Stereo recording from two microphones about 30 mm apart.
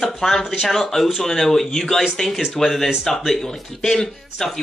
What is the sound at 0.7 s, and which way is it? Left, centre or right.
Speech, centre.